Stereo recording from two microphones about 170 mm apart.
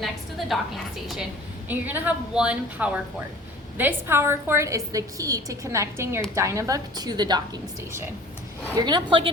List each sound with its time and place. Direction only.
0.0 s a woman's voice: centre (ahead or behind)
1.6 s a woman's voice: 10° right (ahead or behind); by 9.3 s 30° right (ahead or behind)